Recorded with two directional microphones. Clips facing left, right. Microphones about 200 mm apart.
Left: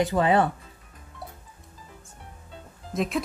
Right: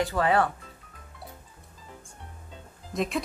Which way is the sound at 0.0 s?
20° left (ahead or behind).